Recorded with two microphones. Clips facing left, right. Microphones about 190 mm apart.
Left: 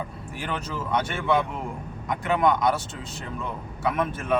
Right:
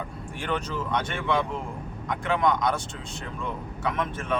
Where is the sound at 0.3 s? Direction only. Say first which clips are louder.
Right 2 dB; 5° left (ahead or behind).